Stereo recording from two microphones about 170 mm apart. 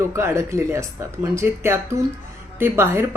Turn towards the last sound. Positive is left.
turn(degrees=-15)  # may be behind; listen again after turning